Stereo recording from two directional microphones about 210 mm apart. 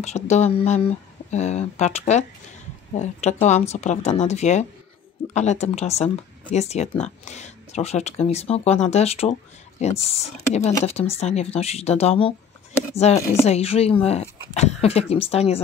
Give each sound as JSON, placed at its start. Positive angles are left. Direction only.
{"t": 0.0, "sound": "speech", "side_deg": 30}